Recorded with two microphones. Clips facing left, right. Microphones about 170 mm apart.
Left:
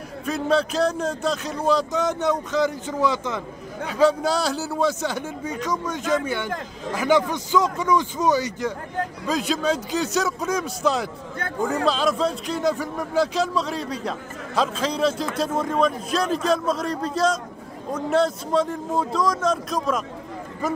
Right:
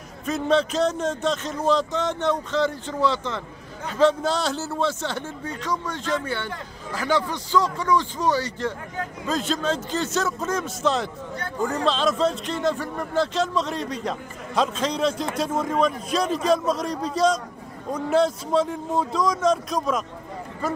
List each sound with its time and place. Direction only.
0.2 s speech: centre (ahead or behind)